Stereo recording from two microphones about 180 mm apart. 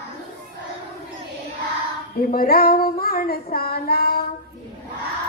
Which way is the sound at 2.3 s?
55° left (ahead or behind).